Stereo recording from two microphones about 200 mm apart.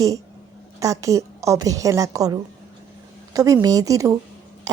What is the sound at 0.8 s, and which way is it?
A woman's voice, 15° right (ahead or behind).